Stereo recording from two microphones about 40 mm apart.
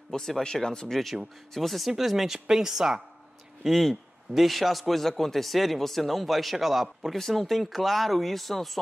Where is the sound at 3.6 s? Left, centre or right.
Centre.